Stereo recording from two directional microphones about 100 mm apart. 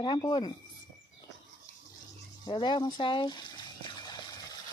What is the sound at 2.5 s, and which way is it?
Speech, 50° left (ahead or behind).